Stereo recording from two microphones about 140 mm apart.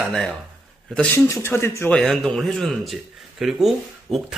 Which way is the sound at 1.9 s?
5° left (ahead or behind).